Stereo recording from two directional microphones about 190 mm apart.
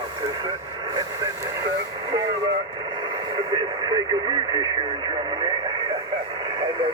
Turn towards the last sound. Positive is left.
turn(degrees=-25)  # may be behind; listen again after turning